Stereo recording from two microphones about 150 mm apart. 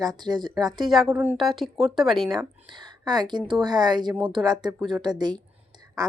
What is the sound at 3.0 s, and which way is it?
Speech, 25° right (ahead or behind).